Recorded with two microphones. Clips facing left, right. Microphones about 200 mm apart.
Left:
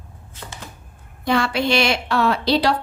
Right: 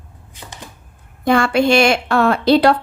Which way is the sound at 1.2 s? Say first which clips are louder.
Right 6 dB; 50° right (ahead or behind).